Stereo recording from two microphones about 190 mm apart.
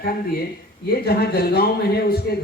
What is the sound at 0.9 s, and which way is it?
Speech, 55° left (ahead or behind).